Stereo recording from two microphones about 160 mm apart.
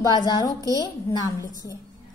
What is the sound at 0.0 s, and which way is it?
Speech, 25° left (ahead or behind).